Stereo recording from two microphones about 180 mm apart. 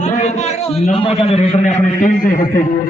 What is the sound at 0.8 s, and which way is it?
A man's voice, 35° left (ahead or behind).